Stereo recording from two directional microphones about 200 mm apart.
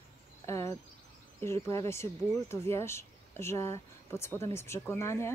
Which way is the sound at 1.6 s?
15° left (ahead or behind).